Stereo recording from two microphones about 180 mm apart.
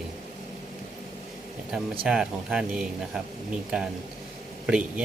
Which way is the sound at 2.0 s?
5° right (ahead or behind).